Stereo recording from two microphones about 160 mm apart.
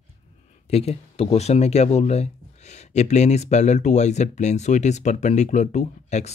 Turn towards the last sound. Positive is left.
turn(degrees=45)  # may be behind; listen again after turning